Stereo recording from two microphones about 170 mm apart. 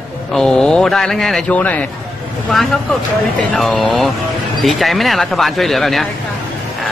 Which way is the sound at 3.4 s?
5° left (ahead or behind).